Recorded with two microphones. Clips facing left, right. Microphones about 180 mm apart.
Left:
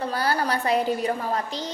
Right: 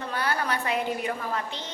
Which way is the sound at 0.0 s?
35° left (ahead or behind).